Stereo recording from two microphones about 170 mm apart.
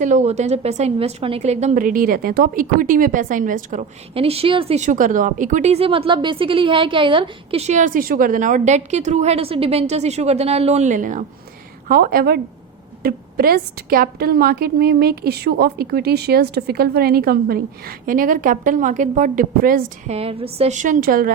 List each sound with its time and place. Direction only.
0.0 s a woman's voice: 45° right (ahead or behind)
4.8 s a woman's voice: 50° right (ahead or behind)
11.9 s a woman's voice: 60° right (ahead or behind)
20.1 s a woman's voice: 35° right (ahead or behind); by 21.3 s 55° right (ahead or behind)